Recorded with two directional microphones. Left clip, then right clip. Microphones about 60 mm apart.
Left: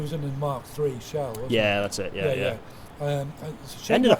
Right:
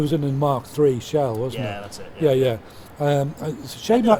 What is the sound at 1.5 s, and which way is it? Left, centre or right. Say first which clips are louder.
Speech: left 7 dB; left.